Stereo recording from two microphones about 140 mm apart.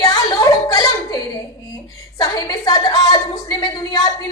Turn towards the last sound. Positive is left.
turn(degrees=30)  # may be behind; listen again after turning